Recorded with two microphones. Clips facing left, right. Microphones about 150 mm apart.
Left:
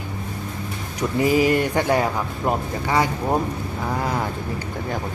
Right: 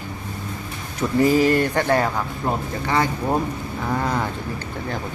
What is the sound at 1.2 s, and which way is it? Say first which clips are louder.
Speech: right 1 dB; 10° left (ahead or behind).